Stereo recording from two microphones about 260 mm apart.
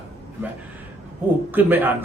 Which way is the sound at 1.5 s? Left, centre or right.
Centre.